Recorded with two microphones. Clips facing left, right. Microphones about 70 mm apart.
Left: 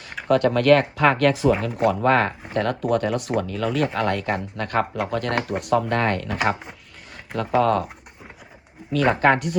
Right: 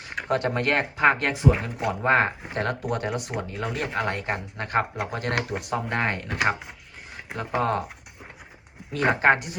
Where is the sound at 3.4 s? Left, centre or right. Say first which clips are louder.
Left 7 dB; right.